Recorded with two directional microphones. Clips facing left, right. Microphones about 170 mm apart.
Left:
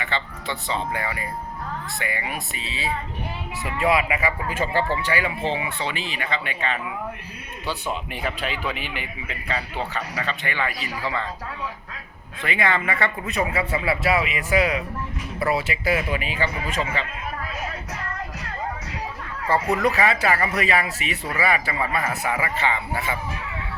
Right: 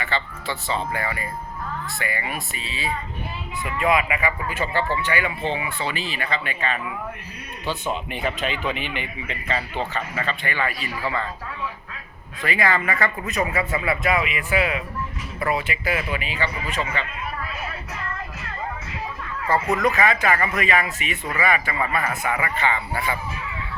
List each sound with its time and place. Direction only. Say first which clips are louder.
0.0 s a man's voice: right 1 dB; 20° left (ahead or behind); by 5.3 s 35° left (ahead or behind)
5.5 s speech: even; 25° left (ahead or behind)
8.1 s speech: right 2 dB; 5° left (ahead or behind)
12.4 s a man's voice: right 1 dB; 25° left (ahead or behind)
17.5 s music: left 1 dB; 40° left (ahead or behind)
19.8 s a man's voice: even; 35° left (ahead or behind)
21.8 s speech: even; 20° left (ahead or behind)